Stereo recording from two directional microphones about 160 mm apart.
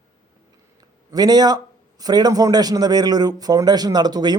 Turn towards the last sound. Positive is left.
turn(degrees=-25)  # may be behind; listen again after turning